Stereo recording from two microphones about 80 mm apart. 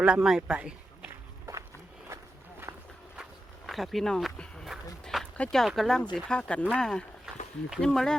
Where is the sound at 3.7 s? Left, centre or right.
Centre.